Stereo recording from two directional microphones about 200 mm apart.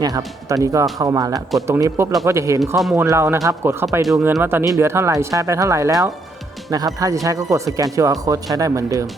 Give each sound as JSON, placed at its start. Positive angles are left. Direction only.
{"t": 0.4, "sound": "speech", "side_deg": -15}
{"t": 2.6, "sound": "speech", "side_deg": 0}
{"t": 2.9, "sound": "speech", "side_deg": -15}
{"t": 4.0, "sound": "speech", "side_deg": 0}
{"t": 4.3, "sound": "speech", "side_deg": -10}